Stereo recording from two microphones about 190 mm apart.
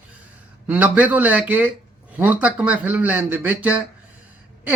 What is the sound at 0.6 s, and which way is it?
Speech, 5° right (ahead or behind).